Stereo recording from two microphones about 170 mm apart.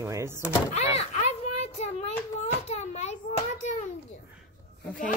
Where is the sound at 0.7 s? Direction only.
40° left (ahead or behind).